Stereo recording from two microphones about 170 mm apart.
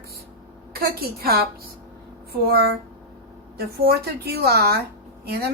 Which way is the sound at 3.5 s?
65° right (ahead or behind).